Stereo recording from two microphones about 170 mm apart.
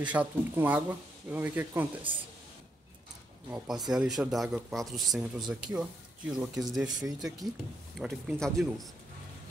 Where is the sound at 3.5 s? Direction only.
5° right (ahead or behind).